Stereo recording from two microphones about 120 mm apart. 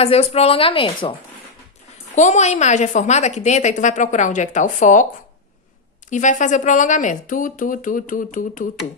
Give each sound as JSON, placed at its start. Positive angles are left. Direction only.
{"t": 0.0, "sound": "a woman's voice", "side_deg": 60}
{"t": 2.1, "sound": "a woman's voice", "side_deg": 80}
{"t": 6.0, "sound": "speech", "side_deg": 90}